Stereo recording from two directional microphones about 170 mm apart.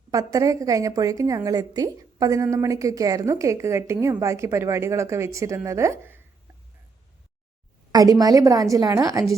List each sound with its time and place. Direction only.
0.1 s a woman's voice: 20° right (ahead or behind)
7.9 s a woman's voice: 20° right (ahead or behind)